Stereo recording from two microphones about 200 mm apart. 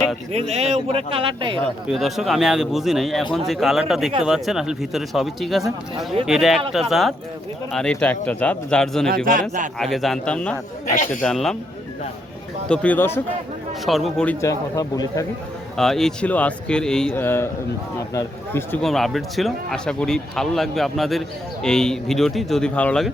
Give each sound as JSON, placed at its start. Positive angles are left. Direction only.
{"t": 0.3, "sound": "a man's voice", "side_deg": -30}
{"t": 1.6, "sound": "speech", "side_deg": 0}
{"t": 9.0, "sound": "a man's voice", "side_deg": -45}
{"t": 9.7, "sound": "speech", "side_deg": 0}
{"t": 10.9, "sound": "a man's voice", "side_deg": 40}
{"t": 11.2, "sound": "speech", "side_deg": 0}
{"t": 12.6, "sound": "speech", "side_deg": 5}
{"t": 13.8, "sound": "speech", "side_deg": 0}
{"t": 14.4, "sound": "speech", "side_deg": 15}
{"t": 15.7, "sound": "speech", "side_deg": 0}